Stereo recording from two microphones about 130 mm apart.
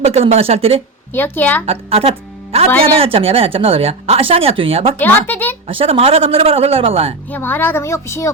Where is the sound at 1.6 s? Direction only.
50° right (ahead or behind).